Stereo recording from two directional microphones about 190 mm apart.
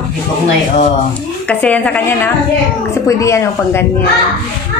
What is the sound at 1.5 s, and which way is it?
A woman's voice, 5° left (ahead or behind).